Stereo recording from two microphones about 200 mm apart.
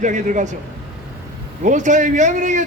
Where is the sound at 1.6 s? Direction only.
40° right (ahead or behind).